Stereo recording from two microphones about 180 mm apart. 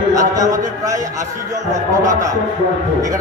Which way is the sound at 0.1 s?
20° right (ahead or behind).